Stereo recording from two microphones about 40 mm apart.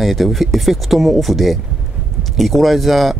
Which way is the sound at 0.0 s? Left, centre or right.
Centre.